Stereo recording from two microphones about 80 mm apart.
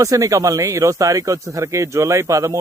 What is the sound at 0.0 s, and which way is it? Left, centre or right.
Speech, right.